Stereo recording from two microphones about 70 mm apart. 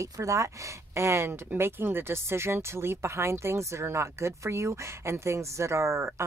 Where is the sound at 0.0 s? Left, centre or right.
Right.